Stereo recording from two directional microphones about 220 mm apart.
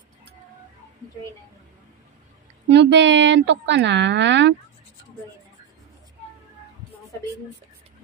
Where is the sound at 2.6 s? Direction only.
55° right (ahead or behind).